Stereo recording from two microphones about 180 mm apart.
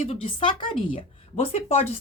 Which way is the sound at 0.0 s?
30° left (ahead or behind).